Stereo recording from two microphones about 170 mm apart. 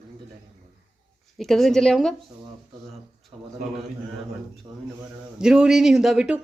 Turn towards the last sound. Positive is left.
turn(degrees=-5)  # may be behind; listen again after turning